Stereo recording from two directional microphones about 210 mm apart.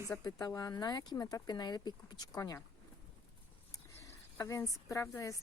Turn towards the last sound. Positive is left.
turn(degrees=15)  # may be behind; listen again after turning